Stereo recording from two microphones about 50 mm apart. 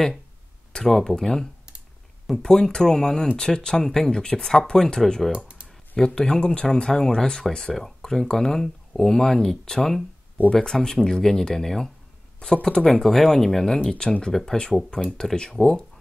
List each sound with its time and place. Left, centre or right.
0.9 s speech: centre
5.3 s computer keyboard: right
5.9 s speech: centre